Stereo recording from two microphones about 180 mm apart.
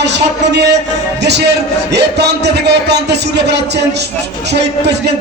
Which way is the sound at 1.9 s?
70° right (ahead or behind).